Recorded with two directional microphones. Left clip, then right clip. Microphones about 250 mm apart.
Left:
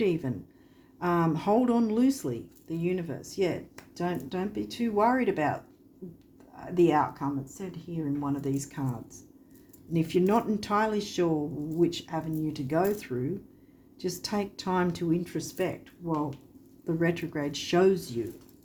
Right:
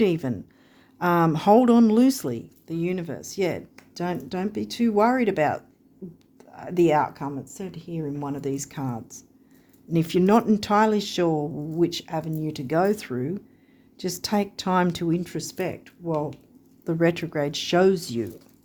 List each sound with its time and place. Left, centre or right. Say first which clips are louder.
0.0 s speech: right 5 dB; right